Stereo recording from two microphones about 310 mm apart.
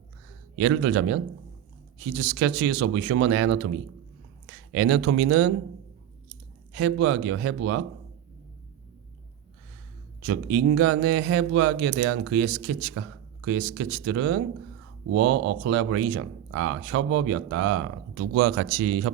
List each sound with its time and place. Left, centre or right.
0.6 s speech: right
4.7 s speech: right
6.7 s speech: right
10.2 s speech: right